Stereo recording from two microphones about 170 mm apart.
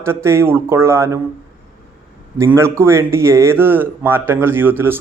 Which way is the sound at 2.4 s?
15° right (ahead or behind).